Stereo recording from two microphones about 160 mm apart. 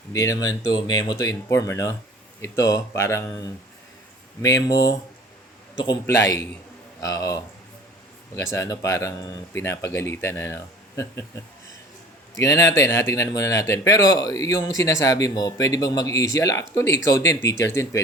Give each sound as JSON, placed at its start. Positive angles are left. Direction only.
{"t": 0.1, "sound": "speech", "side_deg": 20}
{"t": 12.4, "sound": "speech", "side_deg": 20}